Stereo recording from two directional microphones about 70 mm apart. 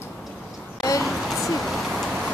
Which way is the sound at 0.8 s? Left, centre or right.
Left.